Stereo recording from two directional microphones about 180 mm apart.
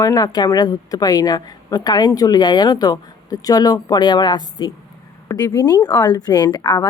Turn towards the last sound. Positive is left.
turn(degrees=20)  # may be behind; listen again after turning